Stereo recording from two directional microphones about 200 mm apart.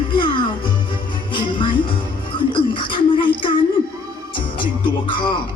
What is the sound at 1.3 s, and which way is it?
Music, 25° left (ahead or behind).